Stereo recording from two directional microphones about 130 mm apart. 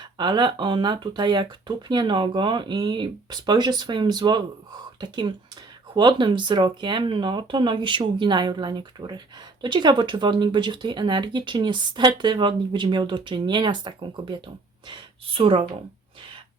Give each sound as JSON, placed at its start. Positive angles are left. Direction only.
{"t": 0.0, "sound": "speech", "side_deg": -35}